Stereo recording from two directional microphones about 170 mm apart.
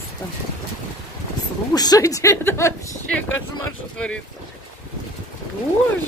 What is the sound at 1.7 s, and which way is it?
Speech, 25° left (ahead or behind).